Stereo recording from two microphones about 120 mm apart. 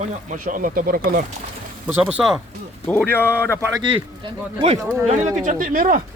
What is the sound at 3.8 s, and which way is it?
Speech, 45° right (ahead or behind).